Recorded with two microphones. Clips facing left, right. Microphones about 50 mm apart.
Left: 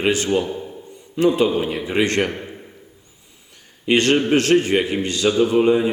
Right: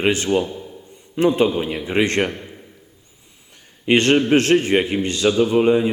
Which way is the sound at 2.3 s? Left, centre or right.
Left.